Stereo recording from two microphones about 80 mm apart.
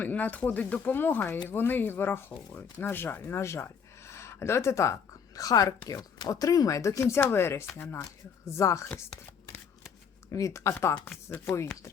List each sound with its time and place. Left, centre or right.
0.0 s speech: centre; by 8.9 s left
10.3 s speech: left